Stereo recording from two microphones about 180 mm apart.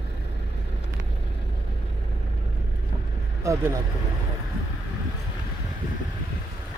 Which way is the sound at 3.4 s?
15° right (ahead or behind).